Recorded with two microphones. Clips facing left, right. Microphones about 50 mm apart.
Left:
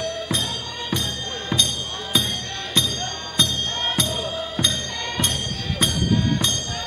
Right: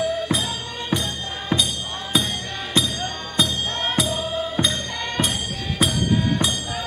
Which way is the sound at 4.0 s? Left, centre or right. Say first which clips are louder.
Right 2 dB; centre.